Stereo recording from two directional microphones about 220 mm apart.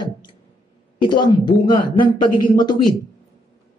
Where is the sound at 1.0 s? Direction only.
20° left (ahead or behind).